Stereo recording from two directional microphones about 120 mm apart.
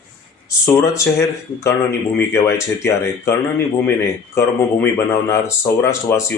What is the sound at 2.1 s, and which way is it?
Speech, 25° left (ahead or behind).